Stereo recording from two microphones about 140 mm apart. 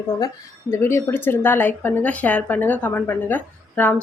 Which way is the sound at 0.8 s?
15° left (ahead or behind).